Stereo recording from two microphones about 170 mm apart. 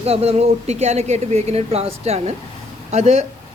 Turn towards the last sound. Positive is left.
turn(degrees=-40)  # may be behind; listen again after turning